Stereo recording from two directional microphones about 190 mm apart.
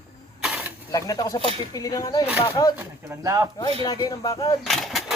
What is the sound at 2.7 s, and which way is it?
Speech, 15° right (ahead or behind).